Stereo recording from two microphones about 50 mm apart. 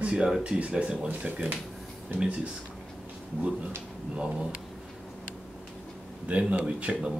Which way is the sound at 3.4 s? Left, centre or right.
Right.